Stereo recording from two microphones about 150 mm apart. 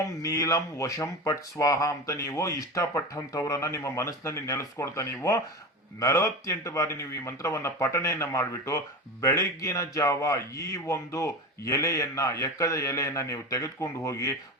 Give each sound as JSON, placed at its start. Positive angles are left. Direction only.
{"t": 0.0, "sound": "speech", "side_deg": 20}